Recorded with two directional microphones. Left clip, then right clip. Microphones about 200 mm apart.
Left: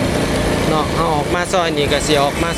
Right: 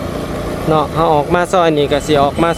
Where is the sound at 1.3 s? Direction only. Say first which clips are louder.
Right 4 dB; 25° right (ahead or behind).